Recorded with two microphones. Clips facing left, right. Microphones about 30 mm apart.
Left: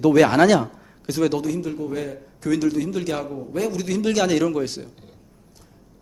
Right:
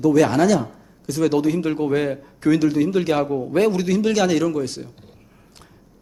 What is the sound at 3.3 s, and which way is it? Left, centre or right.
Speech, right.